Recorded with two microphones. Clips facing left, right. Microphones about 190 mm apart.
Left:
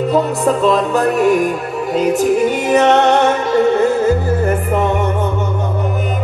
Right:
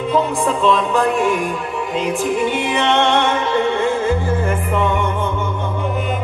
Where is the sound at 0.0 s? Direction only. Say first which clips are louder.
Left 3 dB; 40° left (ahead or behind).